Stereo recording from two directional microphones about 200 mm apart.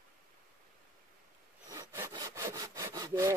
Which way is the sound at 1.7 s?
15° right (ahead or behind).